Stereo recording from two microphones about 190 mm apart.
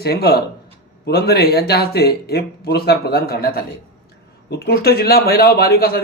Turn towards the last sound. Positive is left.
turn(degrees=50)  # may be behind; listen again after turning